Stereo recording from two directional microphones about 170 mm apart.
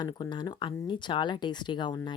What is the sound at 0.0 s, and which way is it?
Speech, 25° left (ahead or behind).